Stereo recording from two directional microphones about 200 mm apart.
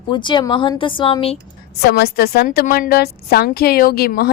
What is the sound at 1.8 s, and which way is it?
A woman's voice, 50° left (ahead or behind).